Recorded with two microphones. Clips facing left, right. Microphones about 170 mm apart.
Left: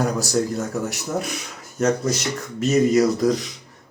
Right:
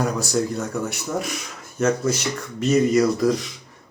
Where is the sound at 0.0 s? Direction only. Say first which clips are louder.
Left 1 dB; centre (ahead or behind).